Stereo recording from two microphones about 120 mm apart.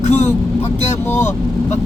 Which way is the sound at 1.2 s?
80° left.